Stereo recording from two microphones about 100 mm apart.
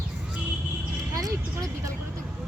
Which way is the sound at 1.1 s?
35° right (ahead or behind).